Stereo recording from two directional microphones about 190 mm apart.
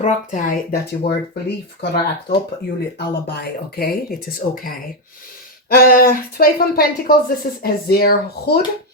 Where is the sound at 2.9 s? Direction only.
55° left (ahead or behind).